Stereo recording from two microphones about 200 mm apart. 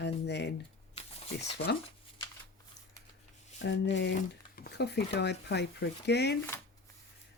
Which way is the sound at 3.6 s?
60° left (ahead or behind).